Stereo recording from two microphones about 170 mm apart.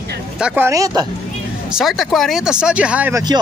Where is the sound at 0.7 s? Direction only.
20° right (ahead or behind).